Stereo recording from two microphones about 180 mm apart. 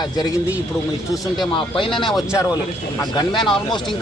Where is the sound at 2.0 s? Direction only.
Centre (ahead or behind).